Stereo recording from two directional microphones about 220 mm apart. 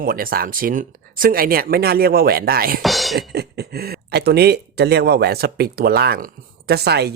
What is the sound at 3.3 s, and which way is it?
Speech, 45° right (ahead or behind).